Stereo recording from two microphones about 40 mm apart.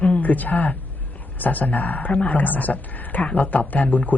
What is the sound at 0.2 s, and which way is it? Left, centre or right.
A woman's voice, left.